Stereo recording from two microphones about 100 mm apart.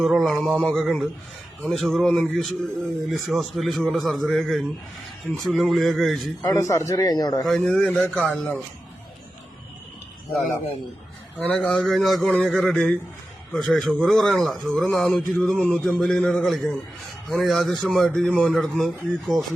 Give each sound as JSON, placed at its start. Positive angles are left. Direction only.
{"t": 0.0, "sound": "a man's voice", "side_deg": 0}
{"t": 6.4, "sound": "a man's voice", "side_deg": 30}
{"t": 7.4, "sound": "a man's voice", "side_deg": 5}
{"t": 11.3, "sound": "a man's voice", "side_deg": 10}